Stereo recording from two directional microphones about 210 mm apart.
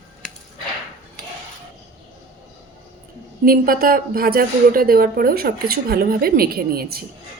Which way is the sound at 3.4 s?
45° right (ahead or behind).